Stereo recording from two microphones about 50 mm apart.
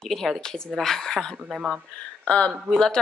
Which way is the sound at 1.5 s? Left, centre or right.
Centre.